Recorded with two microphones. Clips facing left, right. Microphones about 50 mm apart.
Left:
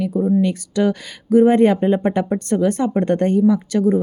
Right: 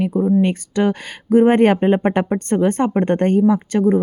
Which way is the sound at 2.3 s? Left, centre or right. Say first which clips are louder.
Right 1 dB; right.